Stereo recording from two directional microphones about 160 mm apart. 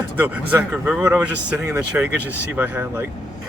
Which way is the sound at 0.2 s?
10° right (ahead or behind).